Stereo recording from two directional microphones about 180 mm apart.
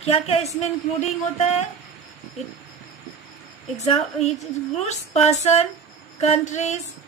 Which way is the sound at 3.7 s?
35° left (ahead or behind).